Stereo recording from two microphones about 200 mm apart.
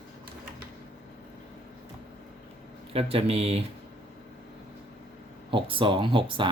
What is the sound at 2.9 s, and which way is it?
Speech, 30° right (ahead or behind).